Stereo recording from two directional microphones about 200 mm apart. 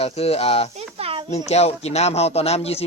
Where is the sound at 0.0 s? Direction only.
30° left (ahead or behind).